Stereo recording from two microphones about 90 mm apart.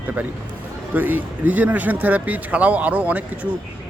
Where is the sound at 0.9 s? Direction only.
20° right (ahead or behind).